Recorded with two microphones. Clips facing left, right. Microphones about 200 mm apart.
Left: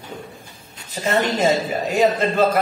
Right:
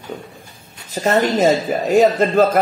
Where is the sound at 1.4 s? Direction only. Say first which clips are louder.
Right 3 dB; 40° right (ahead or behind).